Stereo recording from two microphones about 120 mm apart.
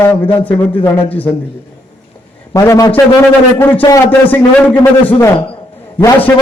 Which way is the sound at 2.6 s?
25° left (ahead or behind).